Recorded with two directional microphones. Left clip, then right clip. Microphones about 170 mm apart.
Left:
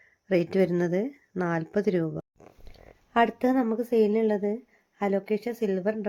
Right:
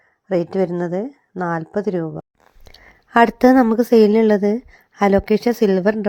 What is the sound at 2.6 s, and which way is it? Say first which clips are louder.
Speech: right 9 dB; 75° right (ahead or behind).